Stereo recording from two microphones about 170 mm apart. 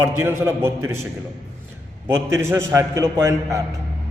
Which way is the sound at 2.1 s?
15° right (ahead or behind).